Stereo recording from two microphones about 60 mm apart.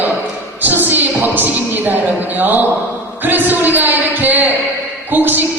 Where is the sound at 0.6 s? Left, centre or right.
Right.